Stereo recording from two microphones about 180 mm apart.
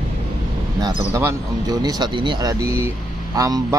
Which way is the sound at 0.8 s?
20° right (ahead or behind).